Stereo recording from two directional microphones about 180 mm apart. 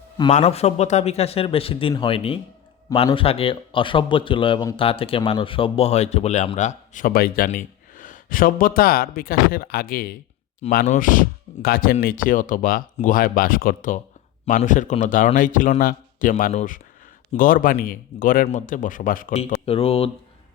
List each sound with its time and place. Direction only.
0.3 s speech: 40° left (ahead or behind)
16.3 s speech: 40° left (ahead or behind)
19.6 s speech: 35° left (ahead or behind)